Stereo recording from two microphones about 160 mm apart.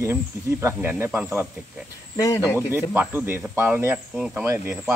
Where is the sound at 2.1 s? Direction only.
20° left (ahead or behind).